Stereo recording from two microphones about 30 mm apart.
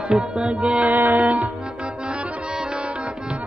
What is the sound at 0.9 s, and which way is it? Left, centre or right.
Music, right.